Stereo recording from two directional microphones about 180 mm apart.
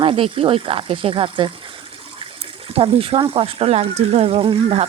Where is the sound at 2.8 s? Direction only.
30° right (ahead or behind).